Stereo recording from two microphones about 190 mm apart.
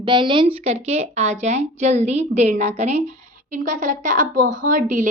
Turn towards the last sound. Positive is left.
turn(degrees=-45)  # may be behind; listen again after turning